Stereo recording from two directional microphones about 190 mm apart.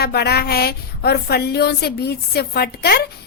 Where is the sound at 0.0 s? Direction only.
55° left (ahead or behind).